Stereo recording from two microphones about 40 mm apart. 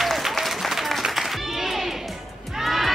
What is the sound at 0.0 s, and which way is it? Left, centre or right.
Applause, centre.